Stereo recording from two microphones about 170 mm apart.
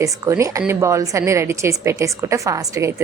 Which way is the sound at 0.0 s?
20° right (ahead or behind).